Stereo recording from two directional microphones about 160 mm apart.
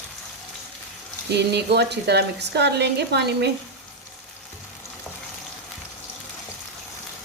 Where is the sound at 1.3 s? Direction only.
90° right.